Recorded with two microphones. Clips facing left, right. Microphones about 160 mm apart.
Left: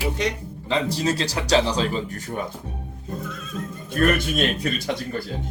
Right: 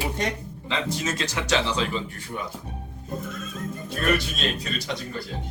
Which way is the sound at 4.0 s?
50° left (ahead or behind).